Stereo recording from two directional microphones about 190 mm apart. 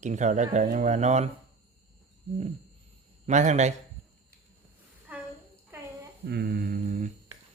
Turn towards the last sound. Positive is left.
turn(degrees=-40)  # may be behind; listen again after turning